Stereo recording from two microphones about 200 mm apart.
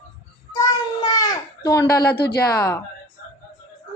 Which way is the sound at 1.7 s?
15° left (ahead or behind).